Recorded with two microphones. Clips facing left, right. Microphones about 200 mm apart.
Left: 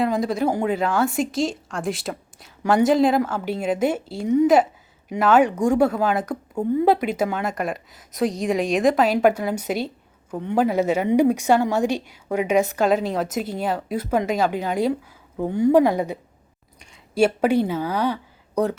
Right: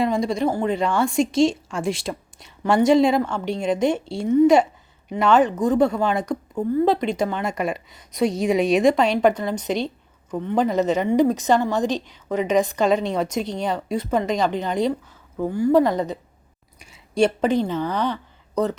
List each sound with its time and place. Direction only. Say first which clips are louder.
0.0 s a woman's voice: even; centre (ahead or behind)
15.4 s speech: left 1 dB; 20° left (ahead or behind)
15.8 s a woman's voice: left 1 dB; 10° left (ahead or behind)
17.2 s a woman's voice: left 1 dB; 10° left (ahead or behind)